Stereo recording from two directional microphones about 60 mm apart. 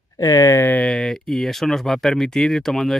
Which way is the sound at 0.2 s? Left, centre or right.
Left.